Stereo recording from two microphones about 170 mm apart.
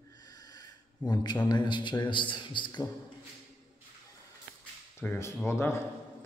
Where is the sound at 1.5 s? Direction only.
25° left (ahead or behind).